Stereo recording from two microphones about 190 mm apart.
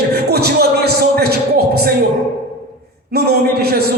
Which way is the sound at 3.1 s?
55° right (ahead or behind).